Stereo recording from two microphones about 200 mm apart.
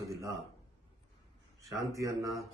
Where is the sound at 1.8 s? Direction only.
15° right (ahead or behind).